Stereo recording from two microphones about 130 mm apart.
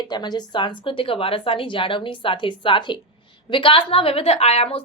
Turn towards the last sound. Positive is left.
turn(degrees=50)  # may be behind; listen again after turning